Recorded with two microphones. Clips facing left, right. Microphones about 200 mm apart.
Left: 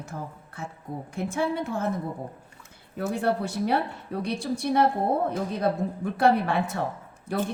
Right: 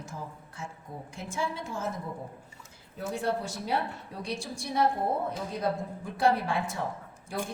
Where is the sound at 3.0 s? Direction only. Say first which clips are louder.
Left 5 dB; 60° left (ahead or behind).